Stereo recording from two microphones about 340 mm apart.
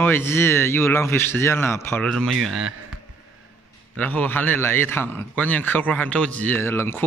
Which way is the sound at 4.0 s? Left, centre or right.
Centre.